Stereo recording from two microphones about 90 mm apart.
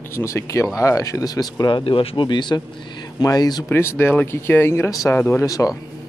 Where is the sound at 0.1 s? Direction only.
30° left (ahead or behind).